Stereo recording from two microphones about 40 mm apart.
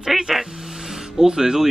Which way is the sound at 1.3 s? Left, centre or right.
Centre.